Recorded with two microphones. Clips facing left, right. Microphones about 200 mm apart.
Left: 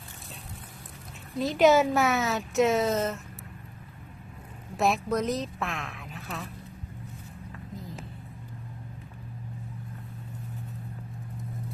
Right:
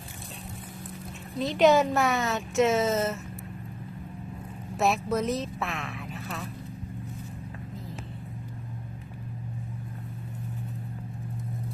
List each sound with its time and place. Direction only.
1.4 s speech: centre (ahead or behind)
4.8 s speech: centre (ahead or behind)